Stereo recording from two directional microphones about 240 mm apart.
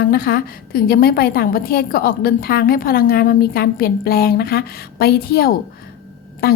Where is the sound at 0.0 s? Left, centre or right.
Left.